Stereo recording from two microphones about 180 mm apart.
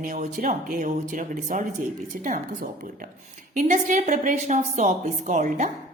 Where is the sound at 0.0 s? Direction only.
45° right (ahead or behind).